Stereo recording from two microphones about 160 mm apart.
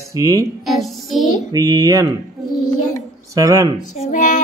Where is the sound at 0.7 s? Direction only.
Centre (ahead or behind).